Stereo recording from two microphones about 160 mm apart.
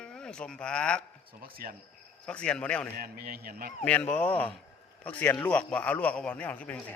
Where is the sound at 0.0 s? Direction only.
5° left (ahead or behind).